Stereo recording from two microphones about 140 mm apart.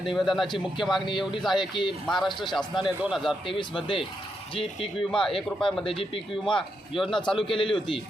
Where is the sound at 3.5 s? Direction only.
40° left (ahead or behind).